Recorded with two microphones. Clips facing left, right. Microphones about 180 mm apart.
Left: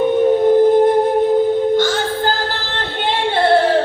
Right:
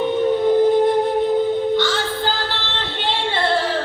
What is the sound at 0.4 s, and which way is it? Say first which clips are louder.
Music: left 3 dB; 50° left (ahead or behind).